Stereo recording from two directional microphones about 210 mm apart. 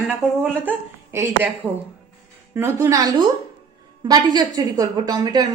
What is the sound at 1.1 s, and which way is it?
A woman's voice, 15° right (ahead or behind).